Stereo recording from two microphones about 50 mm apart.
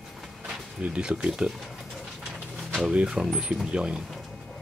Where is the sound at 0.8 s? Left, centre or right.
Centre.